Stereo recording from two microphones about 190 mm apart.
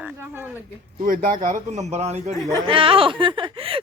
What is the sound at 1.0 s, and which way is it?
A woman's voice, 45° right (ahead or behind).